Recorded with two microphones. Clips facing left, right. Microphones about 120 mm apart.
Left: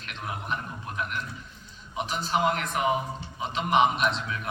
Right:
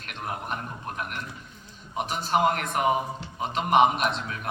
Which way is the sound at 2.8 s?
5° right (ahead or behind).